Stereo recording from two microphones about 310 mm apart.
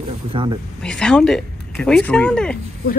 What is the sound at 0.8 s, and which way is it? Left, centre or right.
Speech, centre.